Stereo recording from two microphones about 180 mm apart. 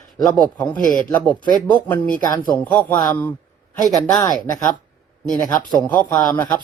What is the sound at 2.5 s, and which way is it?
Speech, 5° left (ahead or behind).